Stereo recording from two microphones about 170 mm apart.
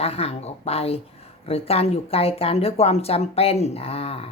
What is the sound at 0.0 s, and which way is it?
Speech, 35° left (ahead or behind).